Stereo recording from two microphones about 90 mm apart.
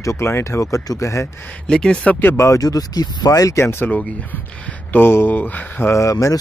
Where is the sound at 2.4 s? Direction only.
40° left (ahead or behind); by 5.9 s 20° left (ahead or behind).